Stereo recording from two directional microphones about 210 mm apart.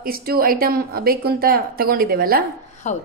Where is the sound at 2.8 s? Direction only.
35° left (ahead or behind).